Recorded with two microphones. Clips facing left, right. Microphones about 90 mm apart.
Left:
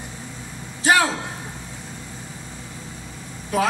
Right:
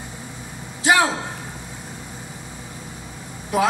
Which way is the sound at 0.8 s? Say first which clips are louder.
Right 1 dB; 20° right (ahead or behind).